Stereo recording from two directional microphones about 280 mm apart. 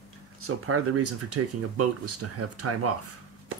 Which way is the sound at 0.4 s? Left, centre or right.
Right.